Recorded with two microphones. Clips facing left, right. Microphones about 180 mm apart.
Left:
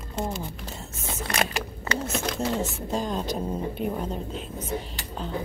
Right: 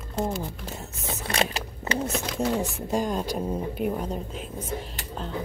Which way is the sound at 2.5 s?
15° right (ahead or behind).